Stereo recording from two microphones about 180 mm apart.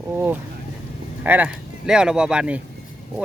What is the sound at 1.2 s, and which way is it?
Speech, 10° right (ahead or behind).